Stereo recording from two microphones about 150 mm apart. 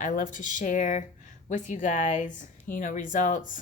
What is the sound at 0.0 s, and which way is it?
Speech, 60° left (ahead or behind).